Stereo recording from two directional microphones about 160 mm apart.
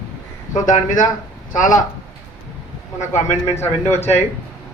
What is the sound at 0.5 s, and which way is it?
Speech, 50° left (ahead or behind).